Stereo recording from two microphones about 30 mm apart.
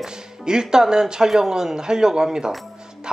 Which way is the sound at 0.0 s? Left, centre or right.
Right.